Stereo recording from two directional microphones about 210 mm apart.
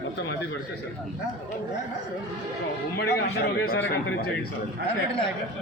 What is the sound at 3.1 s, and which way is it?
A man's voice, 50° left (ahead or behind).